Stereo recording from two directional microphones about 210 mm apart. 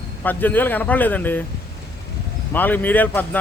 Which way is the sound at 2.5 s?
10° left (ahead or behind).